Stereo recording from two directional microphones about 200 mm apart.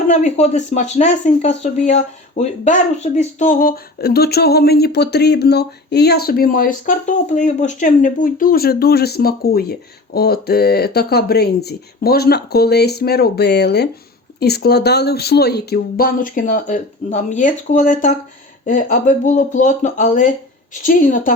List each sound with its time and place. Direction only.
0.1 s speech: 35° left (ahead or behind)